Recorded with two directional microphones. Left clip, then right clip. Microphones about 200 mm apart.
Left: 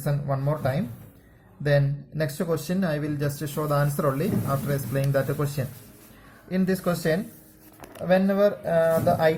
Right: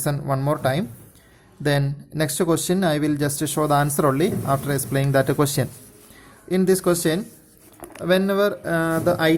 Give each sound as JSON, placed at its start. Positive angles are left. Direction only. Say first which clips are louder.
{"t": 0.0, "sound": "speech", "louder": "right 5 dB", "side_deg": -40}